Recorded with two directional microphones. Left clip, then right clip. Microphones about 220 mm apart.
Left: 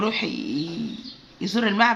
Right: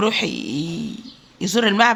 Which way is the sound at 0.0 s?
55° right (ahead or behind).